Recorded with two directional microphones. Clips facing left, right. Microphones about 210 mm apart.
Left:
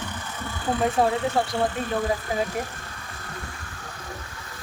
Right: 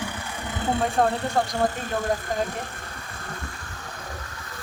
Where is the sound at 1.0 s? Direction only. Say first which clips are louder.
Even; 5° left (ahead or behind).